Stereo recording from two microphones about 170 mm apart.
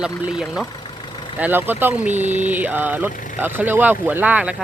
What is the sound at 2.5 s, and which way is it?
Speech, 10° right (ahead or behind).